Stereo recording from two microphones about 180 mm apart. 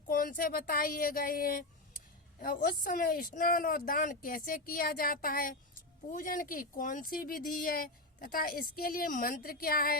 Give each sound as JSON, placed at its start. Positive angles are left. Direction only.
{"t": 0.1, "sound": "speech", "side_deg": 50}